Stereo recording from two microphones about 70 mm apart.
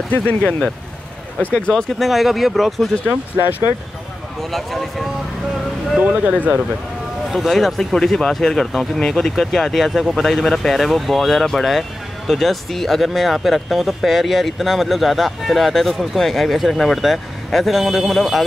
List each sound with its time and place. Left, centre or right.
0.1 s speech: left; by 2.9 s centre
3.3 s speech: right
4.4 s speech: centre
5.9 s speech: right
7.2 s speech: centre